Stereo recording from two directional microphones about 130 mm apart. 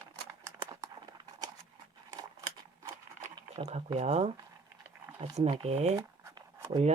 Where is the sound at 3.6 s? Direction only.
50° right (ahead or behind).